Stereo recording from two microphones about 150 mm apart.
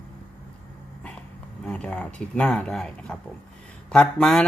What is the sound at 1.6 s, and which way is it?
Speech, 10° left (ahead or behind).